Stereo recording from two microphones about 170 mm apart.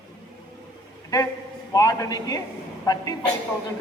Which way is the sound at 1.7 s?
20° left (ahead or behind).